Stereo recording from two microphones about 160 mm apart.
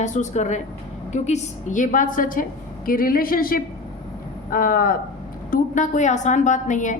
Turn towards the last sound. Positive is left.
turn(degrees=50)  # may be behind; listen again after turning